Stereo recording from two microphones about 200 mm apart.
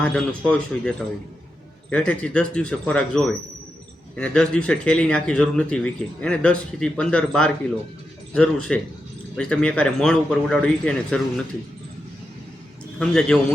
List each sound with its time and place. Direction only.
0.0 s speech: 5° left (ahead or behind)
13.0 s speech: 5° left (ahead or behind)